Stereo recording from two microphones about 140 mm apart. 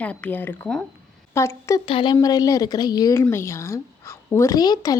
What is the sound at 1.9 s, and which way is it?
Speech, 35° left (ahead or behind).